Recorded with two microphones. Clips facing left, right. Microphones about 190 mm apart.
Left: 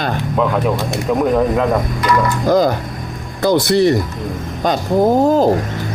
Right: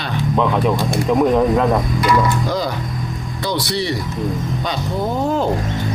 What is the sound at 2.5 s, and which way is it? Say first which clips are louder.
Speech: left 8 dB; 45° left (ahead or behind).